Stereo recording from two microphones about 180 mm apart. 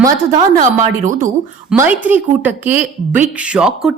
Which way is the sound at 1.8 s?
10° right (ahead or behind).